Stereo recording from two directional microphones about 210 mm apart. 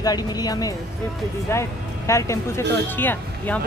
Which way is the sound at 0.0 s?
20° left (ahead or behind).